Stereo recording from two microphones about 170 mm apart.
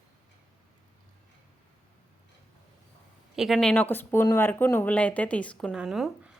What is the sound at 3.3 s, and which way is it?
A woman's voice, centre (ahead or behind).